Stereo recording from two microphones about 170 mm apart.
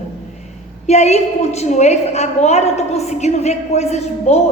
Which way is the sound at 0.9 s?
40° left (ahead or behind).